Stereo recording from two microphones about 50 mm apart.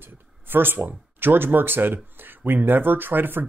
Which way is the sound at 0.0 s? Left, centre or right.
Right.